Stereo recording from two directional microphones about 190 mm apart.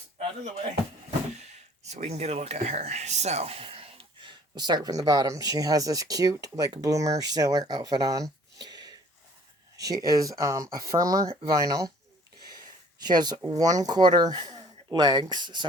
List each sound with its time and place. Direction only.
1.8 s speech: 35° right (ahead or behind); by 11.9 s 20° right (ahead or behind)
13.1 s speech: 20° right (ahead or behind)